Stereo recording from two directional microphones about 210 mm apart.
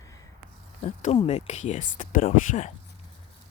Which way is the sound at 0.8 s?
30° left (ahead or behind).